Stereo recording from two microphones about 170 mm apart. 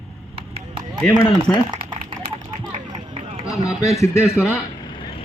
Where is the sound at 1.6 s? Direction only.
30° right (ahead or behind).